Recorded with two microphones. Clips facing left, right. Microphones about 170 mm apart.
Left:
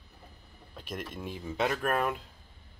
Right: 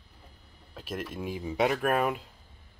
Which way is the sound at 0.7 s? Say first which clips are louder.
Right 3 dB; 5° right (ahead or behind).